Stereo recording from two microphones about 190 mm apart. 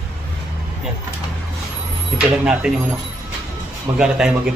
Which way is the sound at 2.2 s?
5° right (ahead or behind).